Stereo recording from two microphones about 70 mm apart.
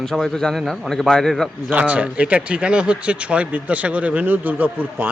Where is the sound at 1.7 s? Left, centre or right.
Right.